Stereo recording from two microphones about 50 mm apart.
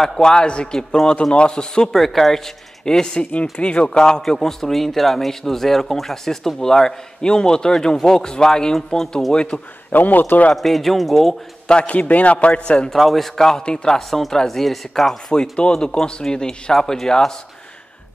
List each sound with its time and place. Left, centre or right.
0.0 s a man's voice: centre
9.3 s a man's voice: centre
9.8 s a man's voice: left
10.5 s speech: centre
11.8 s a man's voice: left
12.9 s speech: centre
15.5 s speech: centre